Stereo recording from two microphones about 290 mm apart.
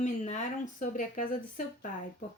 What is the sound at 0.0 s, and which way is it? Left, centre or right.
Speech, left.